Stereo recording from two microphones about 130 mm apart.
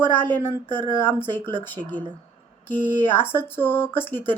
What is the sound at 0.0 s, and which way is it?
Speech, 15° left (ahead or behind).